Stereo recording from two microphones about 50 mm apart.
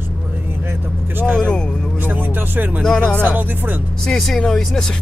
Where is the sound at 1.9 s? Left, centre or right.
Right.